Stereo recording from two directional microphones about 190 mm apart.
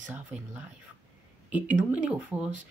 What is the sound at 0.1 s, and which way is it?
Speech, 10° right (ahead or behind).